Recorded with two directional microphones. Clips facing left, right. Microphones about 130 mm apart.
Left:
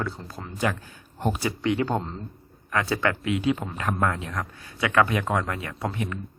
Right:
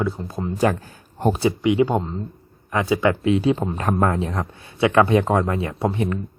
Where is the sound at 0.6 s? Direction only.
40° right (ahead or behind).